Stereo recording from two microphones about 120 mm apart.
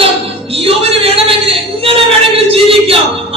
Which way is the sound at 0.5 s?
50° right (ahead or behind).